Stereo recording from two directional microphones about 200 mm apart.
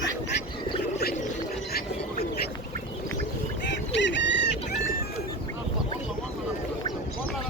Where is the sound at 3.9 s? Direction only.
65° left (ahead or behind).